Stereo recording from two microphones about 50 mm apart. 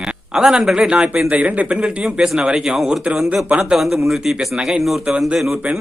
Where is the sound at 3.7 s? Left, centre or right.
Centre.